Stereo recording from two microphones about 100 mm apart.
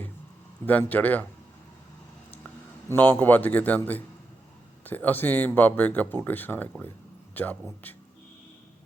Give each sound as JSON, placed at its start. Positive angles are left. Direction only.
{"t": 0.6, "sound": "speech", "side_deg": 15}
{"t": 2.9, "sound": "speech", "side_deg": 20}